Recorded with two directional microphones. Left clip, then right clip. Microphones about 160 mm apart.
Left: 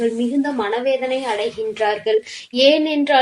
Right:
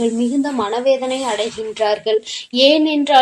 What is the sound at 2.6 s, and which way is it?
Speech, 35° right (ahead or behind).